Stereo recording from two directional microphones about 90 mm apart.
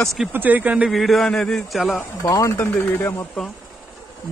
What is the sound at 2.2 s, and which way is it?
Speech, 35° left (ahead or behind).